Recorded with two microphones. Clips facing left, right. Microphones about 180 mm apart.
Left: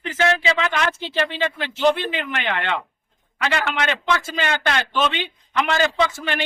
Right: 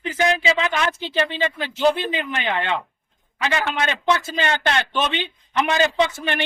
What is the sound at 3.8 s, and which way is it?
Speech, 15° right (ahead or behind).